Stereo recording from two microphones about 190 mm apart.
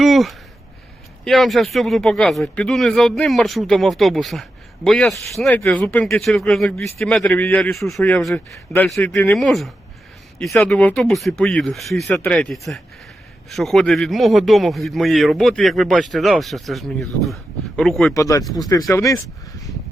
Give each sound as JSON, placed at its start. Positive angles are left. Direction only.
{"t": 0.0, "sound": "a sound", "side_deg": 0}
{"t": 1.2, "sound": "a man's voice", "side_deg": 0}
{"t": 18.1, "sound": "speech", "side_deg": 15}